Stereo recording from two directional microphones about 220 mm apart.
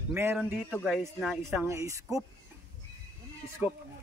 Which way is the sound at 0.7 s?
5° left (ahead or behind).